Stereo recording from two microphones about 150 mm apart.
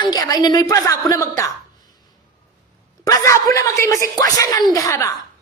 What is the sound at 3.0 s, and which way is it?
A woman's voice, 20° left (ahead or behind).